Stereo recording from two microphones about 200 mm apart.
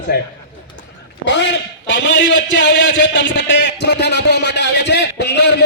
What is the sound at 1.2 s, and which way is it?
A man's voice, 65° left (ahead or behind).